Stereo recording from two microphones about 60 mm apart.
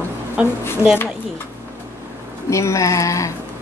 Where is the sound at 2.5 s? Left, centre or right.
Left.